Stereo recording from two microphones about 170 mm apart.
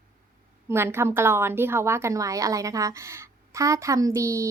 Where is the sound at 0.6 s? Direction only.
15° right (ahead or behind).